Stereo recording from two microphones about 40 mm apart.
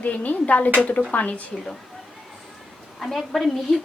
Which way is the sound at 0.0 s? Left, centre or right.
Left.